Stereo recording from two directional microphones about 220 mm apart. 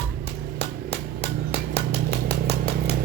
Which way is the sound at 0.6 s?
25° left (ahead or behind).